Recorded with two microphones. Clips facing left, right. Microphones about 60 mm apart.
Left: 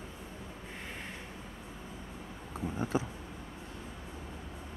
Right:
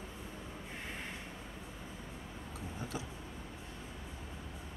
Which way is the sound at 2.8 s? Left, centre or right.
Left.